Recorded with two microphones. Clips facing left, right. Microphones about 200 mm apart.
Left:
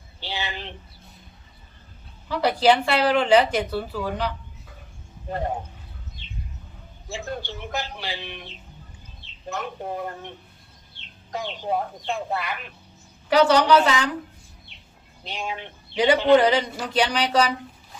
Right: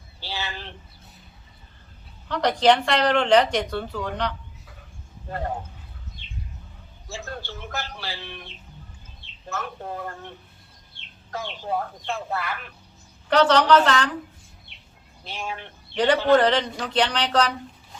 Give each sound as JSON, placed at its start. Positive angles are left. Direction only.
{"t": 0.2, "sound": "a man's voice", "side_deg": 15}
{"t": 2.2, "sound": "a man's voice", "side_deg": 5}
{"t": 5.3, "sound": "a man's voice", "side_deg": 20}
{"t": 7.1, "sound": "a man's voice", "side_deg": 15}
{"t": 9.5, "sound": "a man's voice", "side_deg": 15}
{"t": 15.2, "sound": "a man's voice", "side_deg": 15}